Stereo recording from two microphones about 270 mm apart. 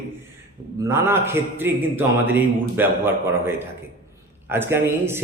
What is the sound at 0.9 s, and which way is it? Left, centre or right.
A man's voice, centre.